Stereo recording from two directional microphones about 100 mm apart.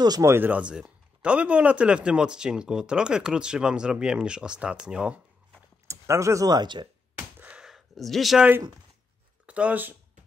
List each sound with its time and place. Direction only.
0.2 s speech: 20° right (ahead or behind)
5.9 s speech: 30° right (ahead or behind); by 6.9 s 50° right (ahead or behind)
7.3 s a sound: 15° right (ahead or behind)
9.5 s speech: 15° right (ahead or behind)